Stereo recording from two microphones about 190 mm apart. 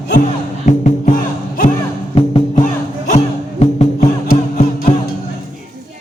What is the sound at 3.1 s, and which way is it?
Music, 35° left (ahead or behind).